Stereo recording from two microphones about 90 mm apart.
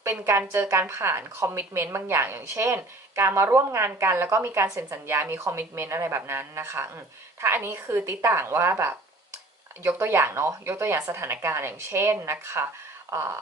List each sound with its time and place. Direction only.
0.1 s a woman's voice: 25° right (ahead or behind)